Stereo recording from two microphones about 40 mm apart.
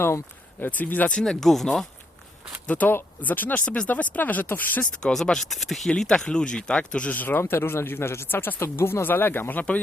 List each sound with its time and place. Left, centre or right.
0.6 s speech: left
1.2 s speech: centre
2.8 s speech: left
5.2 s speech: centre
6.1 s speech: left
7.1 s speech: left
7.3 s speech: left